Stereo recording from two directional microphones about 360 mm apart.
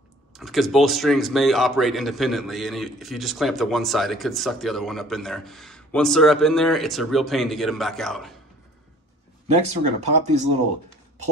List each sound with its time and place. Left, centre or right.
0.3 s speech: centre
9.8 s speech: right